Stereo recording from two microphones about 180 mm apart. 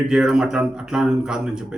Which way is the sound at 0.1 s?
5° right (ahead or behind).